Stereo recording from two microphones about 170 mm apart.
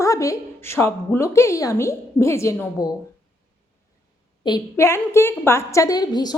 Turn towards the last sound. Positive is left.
turn(degrees=25)  # may be behind; listen again after turning